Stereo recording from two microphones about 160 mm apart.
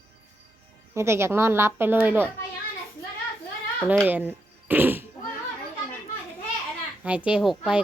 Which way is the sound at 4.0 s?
10° right (ahead or behind).